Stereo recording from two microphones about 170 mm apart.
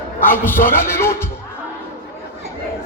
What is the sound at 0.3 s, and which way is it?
Speech, 10° left (ahead or behind).